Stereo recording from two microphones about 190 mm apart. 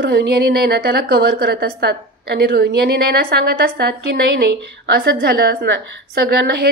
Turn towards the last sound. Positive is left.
turn(degrees=-60)  # may be behind; listen again after turning